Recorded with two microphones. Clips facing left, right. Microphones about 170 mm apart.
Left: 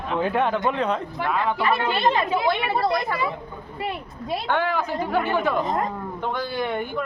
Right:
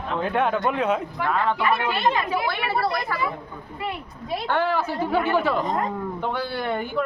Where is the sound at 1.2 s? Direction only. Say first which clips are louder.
Even; 10° left (ahead or behind).